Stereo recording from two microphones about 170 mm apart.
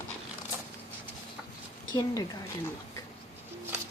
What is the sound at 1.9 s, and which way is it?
Speech, 20° left (ahead or behind).